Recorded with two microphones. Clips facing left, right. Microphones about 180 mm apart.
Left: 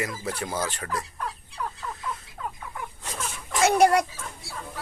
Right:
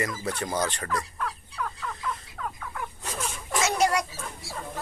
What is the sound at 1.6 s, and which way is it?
Fowl, 30° left (ahead or behind).